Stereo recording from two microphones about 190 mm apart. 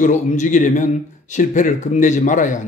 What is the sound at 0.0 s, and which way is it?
Speech, 40° left (ahead or behind).